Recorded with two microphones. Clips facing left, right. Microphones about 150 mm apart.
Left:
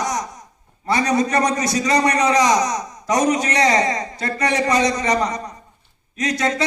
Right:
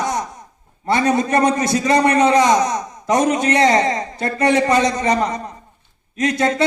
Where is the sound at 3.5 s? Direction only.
25° right (ahead or behind).